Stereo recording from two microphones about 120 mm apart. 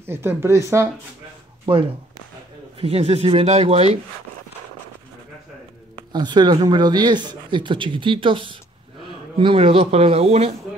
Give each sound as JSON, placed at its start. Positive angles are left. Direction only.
{"t": 0.0, "sound": "speech", "side_deg": -20}
{"t": 1.7, "sound": "speech", "side_deg": -40}
{"t": 2.8, "sound": "speech", "side_deg": -55}
{"t": 5.9, "sound": "speech", "side_deg": -40}